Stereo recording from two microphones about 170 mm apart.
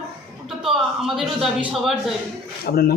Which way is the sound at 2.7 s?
60° left (ahead or behind).